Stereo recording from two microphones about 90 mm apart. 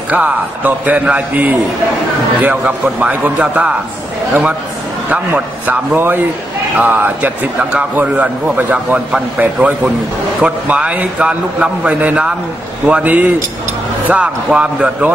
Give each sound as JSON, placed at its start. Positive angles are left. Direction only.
{"t": 0.1, "sound": "a man's voice", "side_deg": -15}
{"t": 5.1, "sound": "a man's voice", "side_deg": -20}